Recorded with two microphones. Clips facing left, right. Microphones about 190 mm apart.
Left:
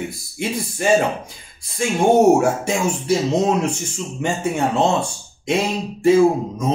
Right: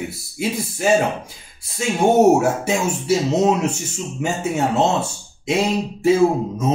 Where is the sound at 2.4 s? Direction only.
5° right (ahead or behind).